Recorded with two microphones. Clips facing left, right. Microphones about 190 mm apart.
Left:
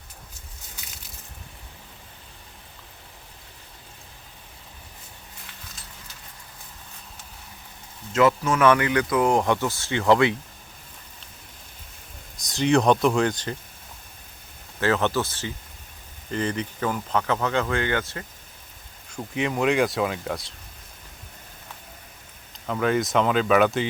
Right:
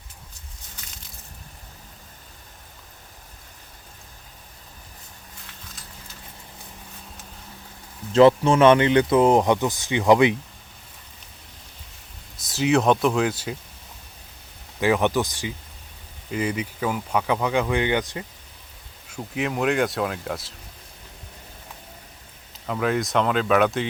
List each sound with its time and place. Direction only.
8.1 s speech: 30° right (ahead or behind)
12.4 s speech: 5° right (ahead or behind)
14.8 s speech: 15° right (ahead or behind)
19.1 s speech: centre (ahead or behind)
22.6 s speech: centre (ahead or behind)